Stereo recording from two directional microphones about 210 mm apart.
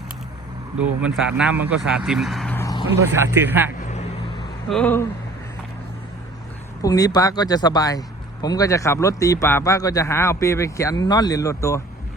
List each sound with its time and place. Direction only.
0.8 s speech: 5° right (ahead or behind)
2.6 s vehicle: 15° left (ahead or behind)
2.9 s speech: 10° right (ahead or behind)
4.7 s speech: 5° left (ahead or behind)
6.8 s speech: 15° left (ahead or behind)